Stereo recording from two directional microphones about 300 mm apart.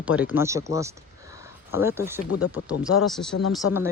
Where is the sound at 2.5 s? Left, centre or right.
Centre.